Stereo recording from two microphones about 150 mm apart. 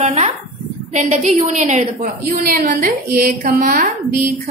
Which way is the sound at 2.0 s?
70° right (ahead or behind).